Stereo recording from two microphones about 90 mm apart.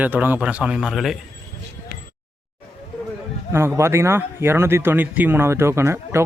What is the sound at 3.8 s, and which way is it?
A man's voice, 30° right (ahead or behind).